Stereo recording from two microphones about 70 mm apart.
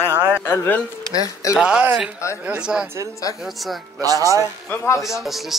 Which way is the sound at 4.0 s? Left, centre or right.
Right.